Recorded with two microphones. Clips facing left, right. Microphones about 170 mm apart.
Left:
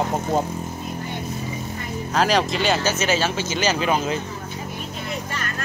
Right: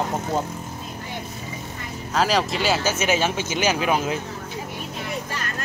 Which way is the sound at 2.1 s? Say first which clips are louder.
Left 1 dB; 5° right (ahead or behind).